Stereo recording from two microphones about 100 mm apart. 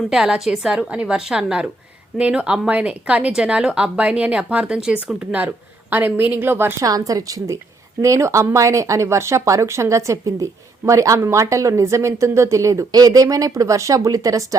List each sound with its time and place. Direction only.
0.1 s speech: 5° right (ahead or behind); by 6.8 s 20° right (ahead or behind)
6.8 s speech: 40° right (ahead or behind)